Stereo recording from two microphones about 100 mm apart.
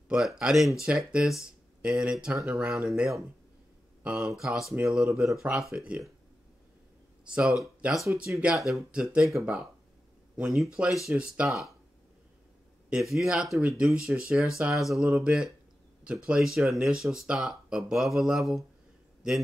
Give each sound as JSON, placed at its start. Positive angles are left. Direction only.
{"t": 0.1, "sound": "speech", "side_deg": -5}
{"t": 2.3, "sound": "speech", "side_deg": -30}
{"t": 2.6, "sound": "speech", "side_deg": -5}
{"t": 7.2, "sound": "speech", "side_deg": -10}
{"t": 8.5, "sound": "speech", "side_deg": 0}
{"t": 12.9, "sound": "a man's voice", "side_deg": -5}